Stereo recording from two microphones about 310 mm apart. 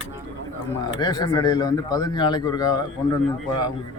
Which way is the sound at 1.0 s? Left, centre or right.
Centre.